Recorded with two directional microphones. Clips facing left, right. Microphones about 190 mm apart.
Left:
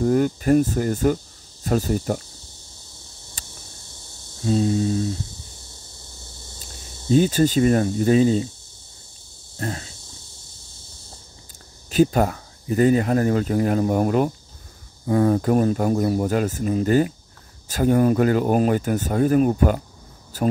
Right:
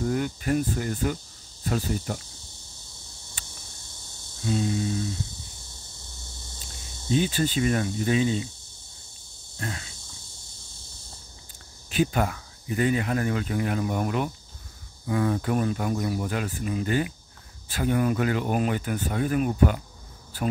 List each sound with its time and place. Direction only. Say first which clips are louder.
0.0 s speech: left 8 dB; 40° left (ahead or behind)
3.4 s a sound: left 2 dB; 40° left (ahead or behind)
4.5 s speech: left 6 dB; 35° left (ahead or behind)
7.1 s speech: left 7 dB; 40° left (ahead or behind)
9.6 s insect: left 6 dB; 35° left (ahead or behind)
11.9 s speech: left 7 dB; 40° left (ahead or behind)